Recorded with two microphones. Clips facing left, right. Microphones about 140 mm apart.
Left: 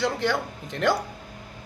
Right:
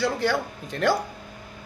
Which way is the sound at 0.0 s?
20° left (ahead or behind).